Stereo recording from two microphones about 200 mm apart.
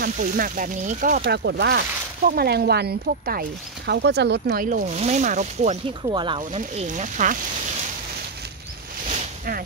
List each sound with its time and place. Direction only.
0.0 s speech: 45° right (ahead or behind)
1.2 s speech: 60° right (ahead or behind)
4.6 s speech: 35° right (ahead or behind)
6.0 s speech: 25° right (ahead or behind); by 7.3 s 40° right (ahead or behind)